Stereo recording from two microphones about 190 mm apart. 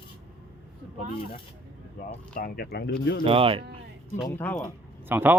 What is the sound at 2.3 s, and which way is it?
Speech, 55° left (ahead or behind).